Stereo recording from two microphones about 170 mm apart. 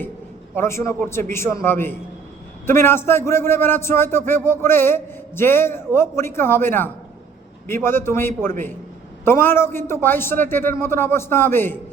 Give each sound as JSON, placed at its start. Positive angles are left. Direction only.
{"t": 0.5, "sound": "a man's voice", "side_deg": 15}